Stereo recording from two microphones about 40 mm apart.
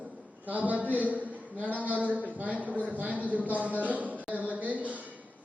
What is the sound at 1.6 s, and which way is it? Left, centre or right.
Speech, left.